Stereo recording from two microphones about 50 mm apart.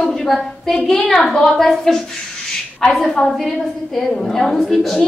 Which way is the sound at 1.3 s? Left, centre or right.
Centre.